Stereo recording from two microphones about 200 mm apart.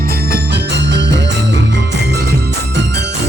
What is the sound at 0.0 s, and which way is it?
Music, 50° right (ahead or behind).